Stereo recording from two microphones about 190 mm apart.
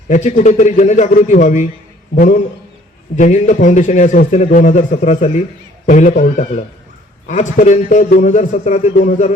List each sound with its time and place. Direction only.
0.1 s a man's voice: 40° left (ahead or behind)